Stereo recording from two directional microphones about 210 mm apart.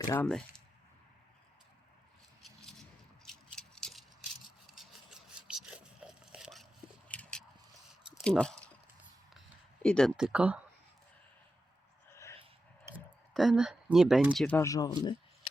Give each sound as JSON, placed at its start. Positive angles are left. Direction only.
{"t": 0.1, "sound": "speech", "side_deg": 5}
{"t": 3.2, "sound": "rattle", "side_deg": 0}
{"t": 4.6, "sound": "a sound", "side_deg": 0}
{"t": 9.8, "sound": "speech", "side_deg": 5}
{"t": 12.1, "sound": "a sound", "side_deg": 15}
{"t": 13.3, "sound": "speech", "side_deg": 0}
{"t": 14.4, "sound": "speech", "side_deg": 10}